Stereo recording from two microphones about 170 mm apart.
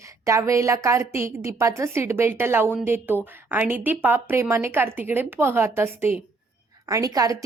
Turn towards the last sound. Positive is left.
turn(degrees=-20)  # may be behind; listen again after turning